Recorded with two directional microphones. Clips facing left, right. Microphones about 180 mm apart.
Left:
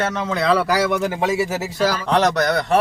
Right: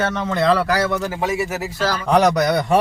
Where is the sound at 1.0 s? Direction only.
20° left (ahead or behind).